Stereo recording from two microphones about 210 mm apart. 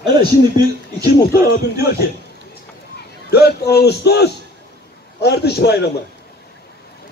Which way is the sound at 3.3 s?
50° left (ahead or behind).